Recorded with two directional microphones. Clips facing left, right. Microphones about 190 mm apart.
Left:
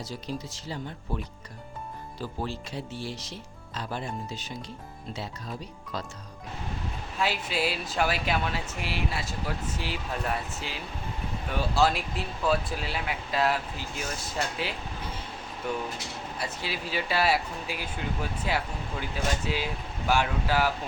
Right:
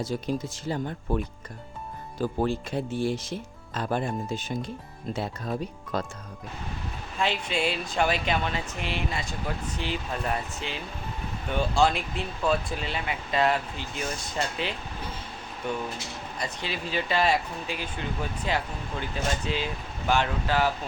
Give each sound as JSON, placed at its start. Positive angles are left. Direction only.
{"t": 0.0, "sound": "speech", "side_deg": -50}
{"t": 7.2, "sound": "speech", "side_deg": 5}
{"t": 16.4, "sound": "speech", "side_deg": 5}